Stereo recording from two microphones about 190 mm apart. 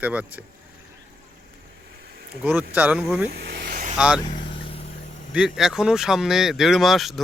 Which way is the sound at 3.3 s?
65° right (ahead or behind).